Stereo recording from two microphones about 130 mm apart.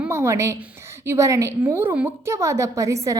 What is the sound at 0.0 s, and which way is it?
A woman's voice, 20° right (ahead or behind).